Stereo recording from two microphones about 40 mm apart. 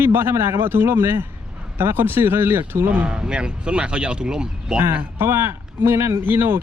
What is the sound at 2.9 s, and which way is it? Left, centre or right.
Speech, right.